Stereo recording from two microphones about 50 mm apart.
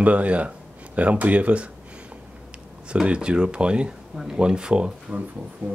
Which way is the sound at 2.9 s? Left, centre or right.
Right.